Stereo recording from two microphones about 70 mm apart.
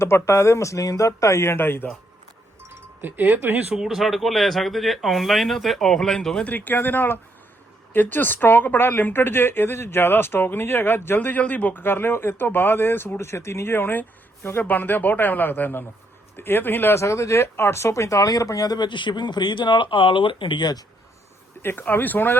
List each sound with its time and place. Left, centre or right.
0.0 s speech: left
3.0 s speech: right
3.8 s speech: centre
6.5 s speech: left
17.0 s speech: left
21.6 s speech: left